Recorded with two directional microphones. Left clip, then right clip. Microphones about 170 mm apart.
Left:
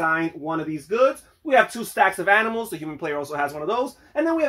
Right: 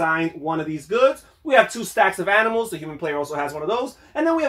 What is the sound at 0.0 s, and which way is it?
Speech, 30° left (ahead or behind).